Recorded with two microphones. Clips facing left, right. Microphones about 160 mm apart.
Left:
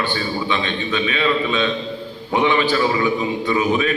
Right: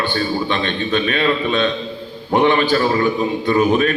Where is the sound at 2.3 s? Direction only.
55° right (ahead or behind).